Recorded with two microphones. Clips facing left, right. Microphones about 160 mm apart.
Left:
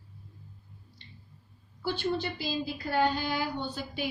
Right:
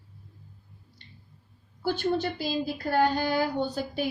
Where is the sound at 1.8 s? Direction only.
45° right (ahead or behind).